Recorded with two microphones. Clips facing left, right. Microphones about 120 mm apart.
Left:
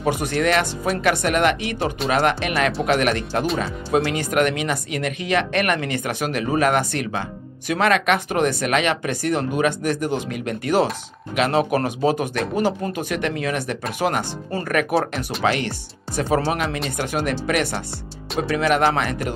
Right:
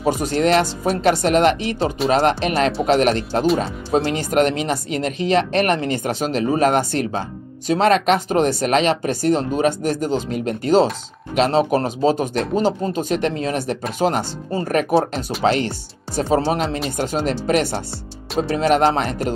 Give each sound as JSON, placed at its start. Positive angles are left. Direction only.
{"t": 0.0, "sound": "speech", "side_deg": -30}